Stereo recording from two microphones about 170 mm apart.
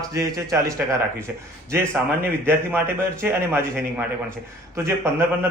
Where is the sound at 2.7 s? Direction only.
15° right (ahead or behind).